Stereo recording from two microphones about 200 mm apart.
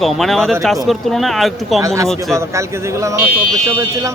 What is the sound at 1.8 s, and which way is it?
Speech, 15° right (ahead or behind).